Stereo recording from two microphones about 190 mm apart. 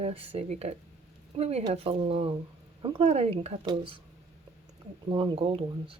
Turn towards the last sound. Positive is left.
turn(degrees=-30)  # may be behind; listen again after turning